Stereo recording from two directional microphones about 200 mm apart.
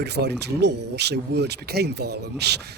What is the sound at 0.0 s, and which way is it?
Speech, 55° right (ahead or behind).